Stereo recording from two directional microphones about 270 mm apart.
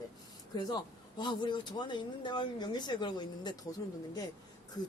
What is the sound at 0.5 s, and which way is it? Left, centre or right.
Speech, centre.